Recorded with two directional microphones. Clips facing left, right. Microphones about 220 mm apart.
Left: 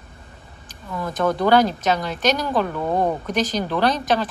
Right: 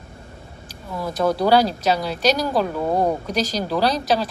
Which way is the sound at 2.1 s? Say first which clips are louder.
Right 2 dB; 35° right (ahead or behind).